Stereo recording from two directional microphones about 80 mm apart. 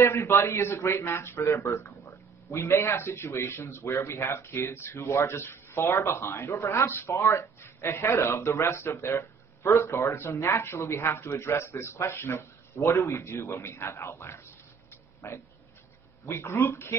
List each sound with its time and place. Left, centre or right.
0.0 s speech: left
16.3 s speech: left